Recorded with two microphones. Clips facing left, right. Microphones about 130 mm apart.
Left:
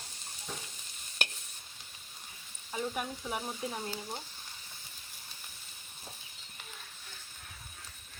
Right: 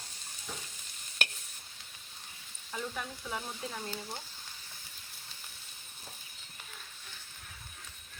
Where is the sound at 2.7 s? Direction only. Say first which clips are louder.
Left 3 dB; 15° left (ahead or behind).